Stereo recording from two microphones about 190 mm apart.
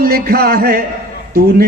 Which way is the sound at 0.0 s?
55° right (ahead or behind).